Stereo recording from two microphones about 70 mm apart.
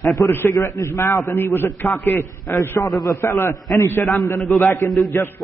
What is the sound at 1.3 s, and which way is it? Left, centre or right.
A man's voice, left.